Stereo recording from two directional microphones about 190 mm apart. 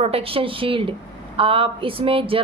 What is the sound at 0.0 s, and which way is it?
A woman's voice, 30° right (ahead or behind).